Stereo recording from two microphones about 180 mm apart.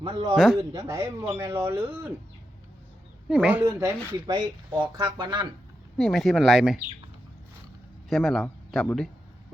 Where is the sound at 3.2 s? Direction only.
10° right (ahead or behind); by 5.5 s 25° right (ahead or behind).